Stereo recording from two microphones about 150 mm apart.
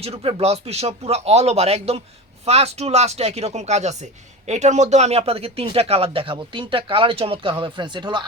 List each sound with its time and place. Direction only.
0.0 s speech: 40° right (ahead or behind)